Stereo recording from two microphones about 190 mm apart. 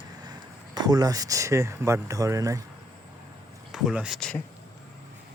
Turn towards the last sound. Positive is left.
turn(degrees=5)  # may be behind; listen again after turning